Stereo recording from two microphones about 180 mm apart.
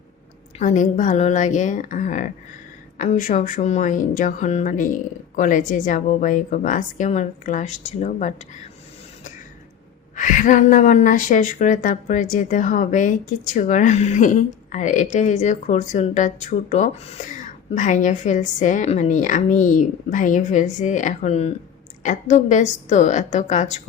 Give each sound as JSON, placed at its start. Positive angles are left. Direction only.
{"t": 0.6, "sound": "speech", "side_deg": 45}
{"t": 10.2, "sound": "a woman's voice", "side_deg": 45}